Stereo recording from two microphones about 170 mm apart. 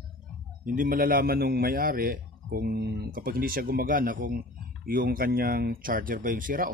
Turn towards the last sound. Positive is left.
turn(degrees=-55)  # may be behind; listen again after turning